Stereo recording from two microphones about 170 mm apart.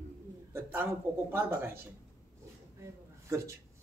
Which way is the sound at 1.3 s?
15° right (ahead or behind).